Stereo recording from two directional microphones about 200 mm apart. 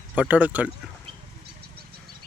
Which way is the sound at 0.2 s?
5° right (ahead or behind).